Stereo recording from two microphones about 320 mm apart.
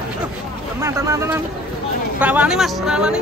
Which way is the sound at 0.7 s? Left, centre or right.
Centre.